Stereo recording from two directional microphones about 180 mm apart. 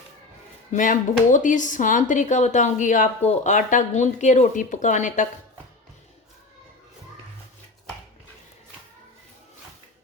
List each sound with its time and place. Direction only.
0.7 s speech: 45° left (ahead or behind)